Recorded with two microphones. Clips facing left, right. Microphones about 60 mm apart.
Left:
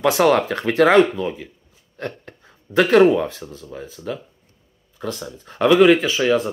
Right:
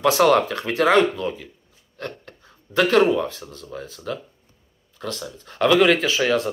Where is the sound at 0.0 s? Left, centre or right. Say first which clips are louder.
Even; left.